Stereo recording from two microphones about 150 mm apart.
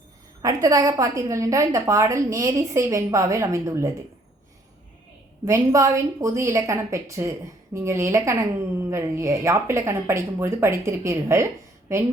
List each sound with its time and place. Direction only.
0.4 s a woman's voice: 25° right (ahead or behind)
5.5 s a woman's voice: 20° right (ahead or behind)